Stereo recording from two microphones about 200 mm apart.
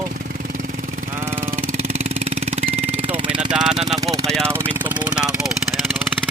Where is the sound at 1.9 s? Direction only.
35° right (ahead or behind).